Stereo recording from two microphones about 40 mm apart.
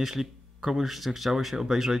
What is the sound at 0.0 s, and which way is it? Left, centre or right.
Speech, centre.